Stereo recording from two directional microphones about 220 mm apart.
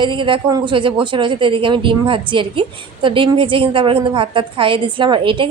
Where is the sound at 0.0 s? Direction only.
20° right (ahead or behind).